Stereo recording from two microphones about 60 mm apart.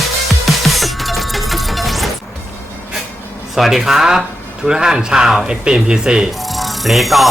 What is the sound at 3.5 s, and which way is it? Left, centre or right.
Speech, centre.